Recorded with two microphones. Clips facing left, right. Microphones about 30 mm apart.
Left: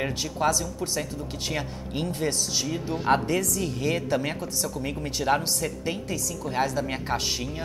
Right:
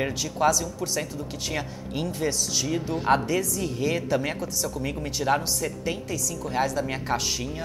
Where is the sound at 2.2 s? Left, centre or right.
Centre.